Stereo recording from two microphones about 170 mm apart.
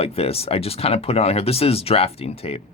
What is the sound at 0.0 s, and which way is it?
Speech, 35° left (ahead or behind).